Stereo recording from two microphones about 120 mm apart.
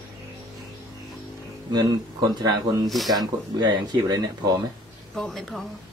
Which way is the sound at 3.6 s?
35° right (ahead or behind).